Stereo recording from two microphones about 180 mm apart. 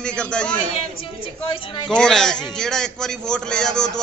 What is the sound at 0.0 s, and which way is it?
Speech, 5° left (ahead or behind).